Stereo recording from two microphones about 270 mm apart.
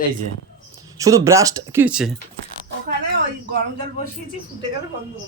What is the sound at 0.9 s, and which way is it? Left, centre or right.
Speech, centre.